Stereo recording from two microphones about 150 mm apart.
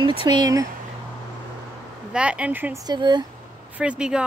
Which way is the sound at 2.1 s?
10° right (ahead or behind).